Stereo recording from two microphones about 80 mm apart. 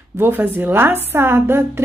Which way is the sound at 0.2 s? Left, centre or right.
Right.